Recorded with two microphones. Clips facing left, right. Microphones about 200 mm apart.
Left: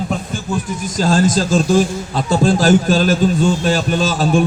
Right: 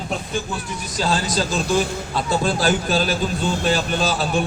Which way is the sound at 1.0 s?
45° left (ahead or behind).